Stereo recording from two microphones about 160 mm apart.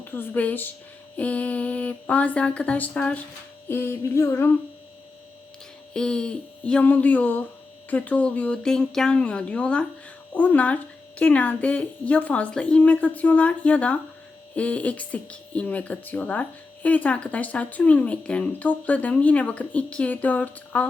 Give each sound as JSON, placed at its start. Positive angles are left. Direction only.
{"t": 0.0, "sound": "speech", "side_deg": 15}
{"t": 5.9, "sound": "speech", "side_deg": 5}